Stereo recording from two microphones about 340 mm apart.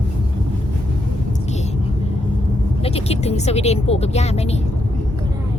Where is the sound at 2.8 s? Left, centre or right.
Centre.